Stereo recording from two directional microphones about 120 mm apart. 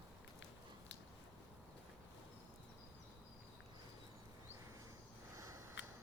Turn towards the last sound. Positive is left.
turn(degrees=-25)  # may be behind; listen again after turning